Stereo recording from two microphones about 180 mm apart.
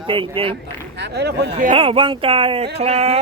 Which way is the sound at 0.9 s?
65° right (ahead or behind).